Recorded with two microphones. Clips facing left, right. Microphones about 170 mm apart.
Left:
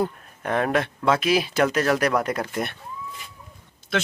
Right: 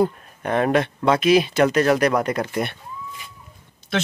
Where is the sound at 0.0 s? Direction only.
Centre (ahead or behind).